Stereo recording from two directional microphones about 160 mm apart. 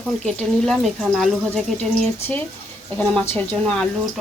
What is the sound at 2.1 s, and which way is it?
Speech, 15° left (ahead or behind).